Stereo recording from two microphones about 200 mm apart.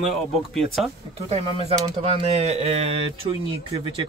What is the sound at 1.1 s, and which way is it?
A man's voice, 30° right (ahead or behind).